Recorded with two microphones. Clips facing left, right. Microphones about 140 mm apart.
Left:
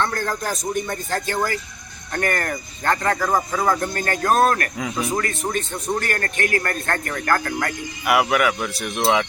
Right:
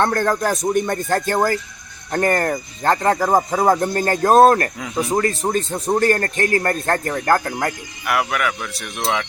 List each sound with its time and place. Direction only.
0.0 s speech: 55° right (ahead or behind)
2.1 s a man's voice: 30° right (ahead or behind)
8.0 s speech: 5° left (ahead or behind)